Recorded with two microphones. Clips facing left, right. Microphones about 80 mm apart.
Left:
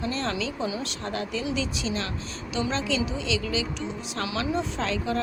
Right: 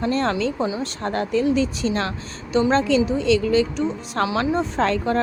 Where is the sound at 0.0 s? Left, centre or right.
Right.